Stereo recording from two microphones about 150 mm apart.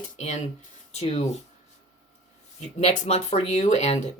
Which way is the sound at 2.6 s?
45° left (ahead or behind).